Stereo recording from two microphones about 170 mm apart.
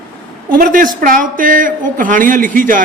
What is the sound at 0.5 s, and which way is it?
A man's voice, 55° right (ahead or behind).